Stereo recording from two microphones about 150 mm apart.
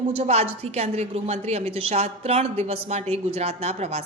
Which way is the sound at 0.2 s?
45° right (ahead or behind).